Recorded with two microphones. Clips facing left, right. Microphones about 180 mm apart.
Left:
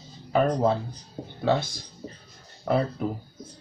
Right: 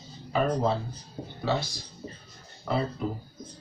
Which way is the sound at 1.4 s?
50° left (ahead or behind).